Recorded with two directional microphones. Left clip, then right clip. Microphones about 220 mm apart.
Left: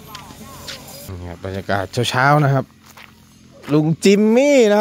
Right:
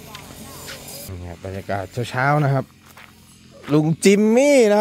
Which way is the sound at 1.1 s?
15° left (ahead or behind).